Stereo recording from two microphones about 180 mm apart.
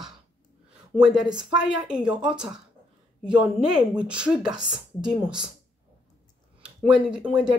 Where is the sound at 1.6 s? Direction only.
5° right (ahead or behind).